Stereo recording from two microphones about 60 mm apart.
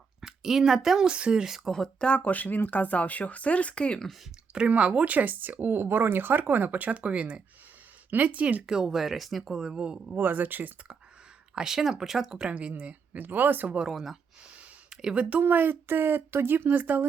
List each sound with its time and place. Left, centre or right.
0.2 s speech: centre
1.7 s speech: centre
4.5 s speech: centre
8.7 s speech: centre
10.2 s speech: right
11.5 s speech: centre
12.5 s speech: right
13.8 s speech: centre
14.5 s a sound: right
15.1 s speech: right
15.4 s speech: right